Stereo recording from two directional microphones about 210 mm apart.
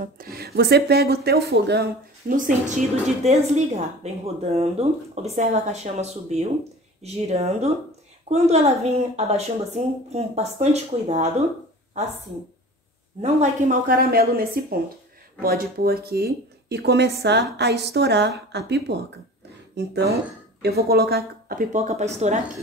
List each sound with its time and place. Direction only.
0.0 s speech: 45° right (ahead or behind)
13.2 s speech: 35° right (ahead or behind)